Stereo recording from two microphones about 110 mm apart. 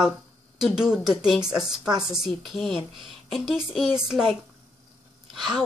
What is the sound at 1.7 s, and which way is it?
Speech, 40° right (ahead or behind).